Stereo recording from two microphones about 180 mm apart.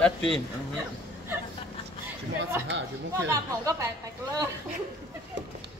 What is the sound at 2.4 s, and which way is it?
Speech, 80° right.